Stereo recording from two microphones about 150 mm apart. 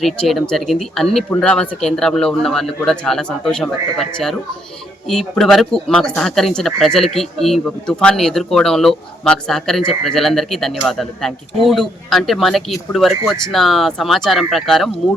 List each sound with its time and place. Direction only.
0.0 s speech: centre (ahead or behind)